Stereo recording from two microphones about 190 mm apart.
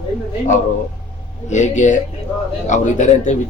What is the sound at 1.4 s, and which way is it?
Speech, 40° left (ahead or behind).